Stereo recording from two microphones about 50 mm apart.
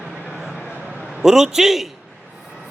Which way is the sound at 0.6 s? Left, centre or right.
Right.